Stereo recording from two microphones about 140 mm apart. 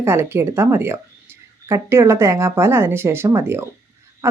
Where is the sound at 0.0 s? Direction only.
15° right (ahead or behind).